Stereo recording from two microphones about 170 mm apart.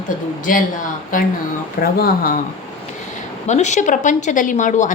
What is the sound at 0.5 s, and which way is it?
A woman's voice, 50° left (ahead or behind).